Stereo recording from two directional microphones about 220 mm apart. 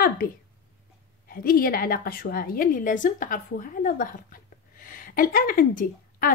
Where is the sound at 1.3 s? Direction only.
40° left (ahead or behind).